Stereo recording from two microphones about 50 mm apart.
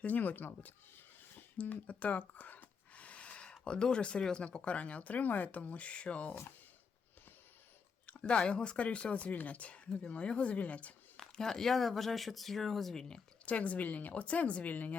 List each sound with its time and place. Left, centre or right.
0.0 s speech: left
1.5 s a sound: left
3.6 s speech: centre
8.0 s speech: left
11.2 s speech: centre
13.4 s speech: left